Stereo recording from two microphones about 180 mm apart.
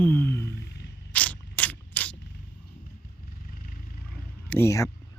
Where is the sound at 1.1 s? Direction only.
10° left (ahead or behind).